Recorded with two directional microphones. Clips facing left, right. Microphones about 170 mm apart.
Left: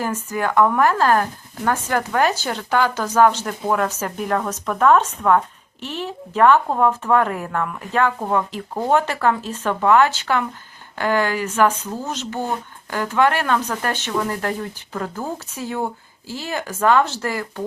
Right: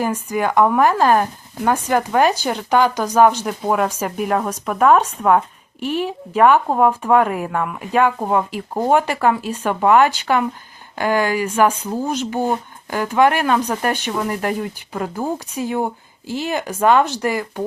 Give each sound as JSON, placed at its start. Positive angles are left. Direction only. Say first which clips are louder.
{"t": 0.0, "sound": "speech", "louder": "right 3 dB", "side_deg": -15}